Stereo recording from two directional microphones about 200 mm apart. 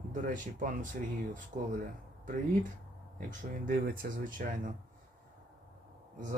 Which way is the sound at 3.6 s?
45° right (ahead or behind).